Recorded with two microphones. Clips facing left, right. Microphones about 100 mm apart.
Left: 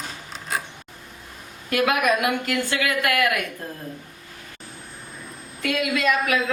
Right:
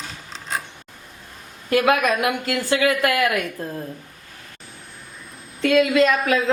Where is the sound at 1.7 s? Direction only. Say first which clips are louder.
Right 3 dB; 25° right (ahead or behind).